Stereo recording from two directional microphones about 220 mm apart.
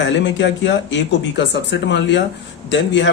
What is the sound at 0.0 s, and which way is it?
Speech, 55° left (ahead or behind).